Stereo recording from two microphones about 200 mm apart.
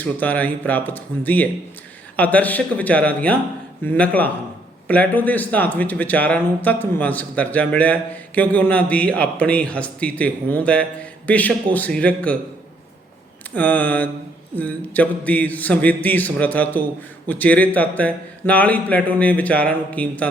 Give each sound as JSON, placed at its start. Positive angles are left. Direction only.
{"t": 0.0, "sound": "speech", "side_deg": 10}
{"t": 13.5, "sound": "speech", "side_deg": 5}